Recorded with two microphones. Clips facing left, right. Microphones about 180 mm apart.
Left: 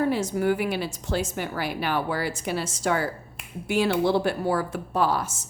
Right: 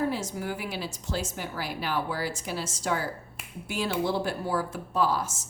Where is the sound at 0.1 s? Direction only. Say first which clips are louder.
Left 8 dB; 65° left (ahead or behind).